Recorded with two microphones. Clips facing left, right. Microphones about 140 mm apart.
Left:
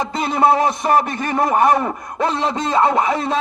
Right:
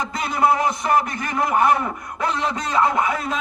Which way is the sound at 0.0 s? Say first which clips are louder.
Left 4 dB; 25° left (ahead or behind).